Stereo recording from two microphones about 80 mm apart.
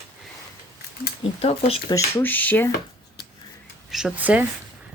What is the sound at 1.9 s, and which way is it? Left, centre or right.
Speech, left.